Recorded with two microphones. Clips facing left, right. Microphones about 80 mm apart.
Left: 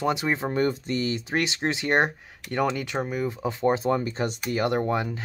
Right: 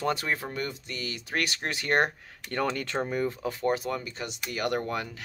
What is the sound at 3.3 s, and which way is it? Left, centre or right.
Speech, left.